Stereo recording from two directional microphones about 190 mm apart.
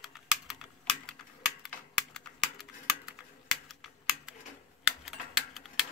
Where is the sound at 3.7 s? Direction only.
Centre (ahead or behind).